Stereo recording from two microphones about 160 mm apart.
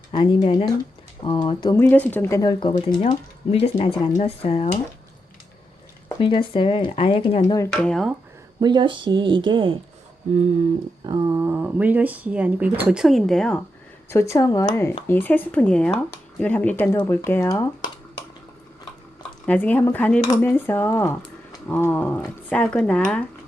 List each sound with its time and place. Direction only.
0.1 s speech: 30° left (ahead or behind)
1.7 s speech: 10° left (ahead or behind); by 4.8 s 40° left (ahead or behind)
6.1 s speech: 35° left (ahead or behind)
7.7 s speech: 5° left (ahead or behind)
8.6 s speech: 30° right (ahead or behind)
11.0 s speech: 25° right (ahead or behind); by 13.6 s 5° left (ahead or behind)
14.1 s speech: 15° left (ahead or behind)
19.5 s speech: 10° left (ahead or behind)